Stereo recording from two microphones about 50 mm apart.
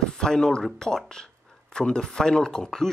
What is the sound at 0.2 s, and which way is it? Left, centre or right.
Speech, centre.